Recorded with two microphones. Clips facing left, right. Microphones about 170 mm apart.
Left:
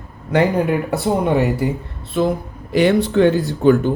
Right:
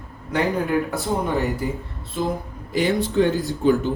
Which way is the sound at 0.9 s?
70° left (ahead or behind).